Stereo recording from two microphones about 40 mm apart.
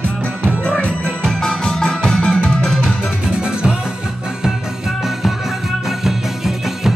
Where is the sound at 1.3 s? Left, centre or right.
Centre.